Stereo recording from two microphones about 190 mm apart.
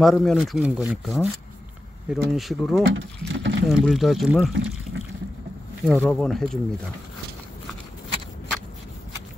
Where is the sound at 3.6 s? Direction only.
Centre (ahead or behind).